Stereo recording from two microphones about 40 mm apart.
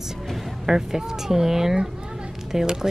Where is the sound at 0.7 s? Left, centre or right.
Centre.